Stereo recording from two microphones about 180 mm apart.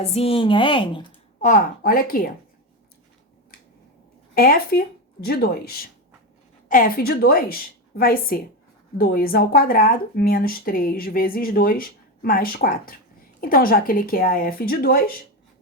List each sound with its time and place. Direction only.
0.0 s a woman's voice: 35° left (ahead or behind)
1.4 s speech: 45° left (ahead or behind)
4.4 s speech: 55° left (ahead or behind)